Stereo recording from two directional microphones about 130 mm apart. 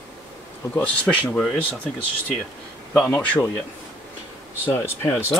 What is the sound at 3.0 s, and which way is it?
Speech, 10° left (ahead or behind).